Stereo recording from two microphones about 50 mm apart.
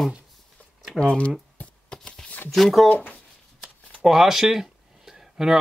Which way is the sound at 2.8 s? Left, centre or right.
Left.